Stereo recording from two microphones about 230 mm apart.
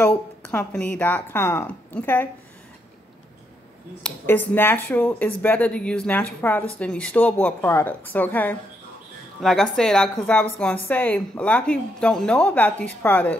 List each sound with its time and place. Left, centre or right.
0.0 s speech: centre
4.0 s a woman's voice: centre